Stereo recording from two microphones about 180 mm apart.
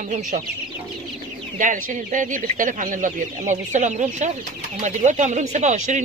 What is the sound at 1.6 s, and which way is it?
Speech, 45° right (ahead or behind).